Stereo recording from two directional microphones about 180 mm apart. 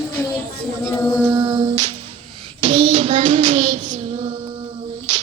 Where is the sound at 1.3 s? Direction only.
20° right (ahead or behind).